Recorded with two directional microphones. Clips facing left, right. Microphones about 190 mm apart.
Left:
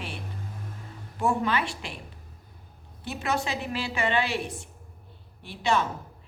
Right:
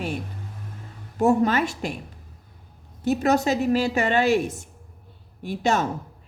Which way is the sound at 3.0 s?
40° right (ahead or behind).